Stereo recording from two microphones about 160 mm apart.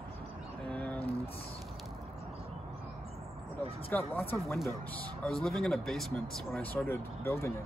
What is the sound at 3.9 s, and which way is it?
Speech, 10° left (ahead or behind).